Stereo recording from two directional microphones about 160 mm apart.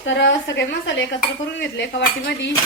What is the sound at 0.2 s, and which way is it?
A woman's voice, 90° left.